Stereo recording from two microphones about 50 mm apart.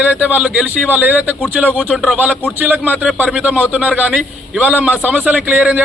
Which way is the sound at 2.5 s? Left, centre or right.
Right.